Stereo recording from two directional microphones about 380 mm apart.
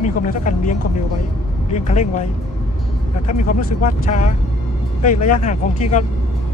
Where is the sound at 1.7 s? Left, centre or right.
Centre.